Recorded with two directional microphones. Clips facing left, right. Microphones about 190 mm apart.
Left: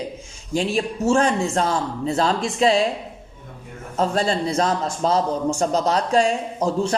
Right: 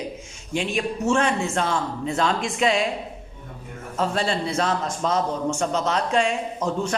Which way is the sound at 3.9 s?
40° left (ahead or behind).